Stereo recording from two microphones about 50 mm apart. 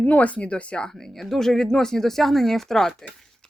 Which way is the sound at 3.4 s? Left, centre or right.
Centre.